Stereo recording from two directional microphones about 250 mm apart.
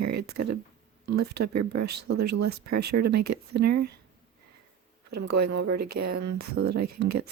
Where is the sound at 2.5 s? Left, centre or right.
Right.